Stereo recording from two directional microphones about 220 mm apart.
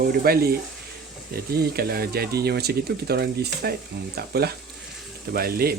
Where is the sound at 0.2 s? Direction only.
45° right (ahead or behind).